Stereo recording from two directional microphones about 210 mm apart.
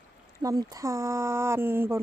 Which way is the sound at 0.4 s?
15° right (ahead or behind).